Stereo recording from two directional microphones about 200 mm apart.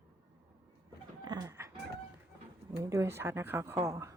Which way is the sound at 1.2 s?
20° right (ahead or behind).